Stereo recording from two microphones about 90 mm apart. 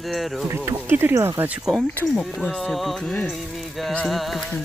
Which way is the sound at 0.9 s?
25° right (ahead or behind).